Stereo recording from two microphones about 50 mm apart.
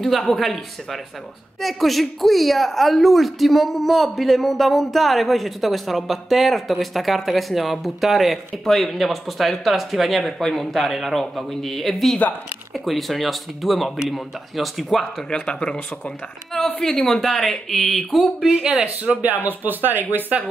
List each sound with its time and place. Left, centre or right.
0.0 s a man's voice: centre
1.6 s speech: centre
15.2 s speech: centre
16.5 s speech: centre
19.2 s speech: right